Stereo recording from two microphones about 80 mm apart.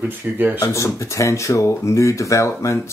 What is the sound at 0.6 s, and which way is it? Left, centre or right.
Speech, left.